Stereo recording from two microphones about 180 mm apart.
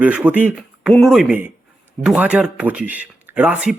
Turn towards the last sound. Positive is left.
turn(degrees=-5)  # may be behind; listen again after turning